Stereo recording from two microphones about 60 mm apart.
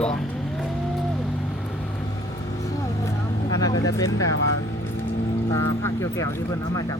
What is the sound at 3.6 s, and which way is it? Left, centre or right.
Speech, left.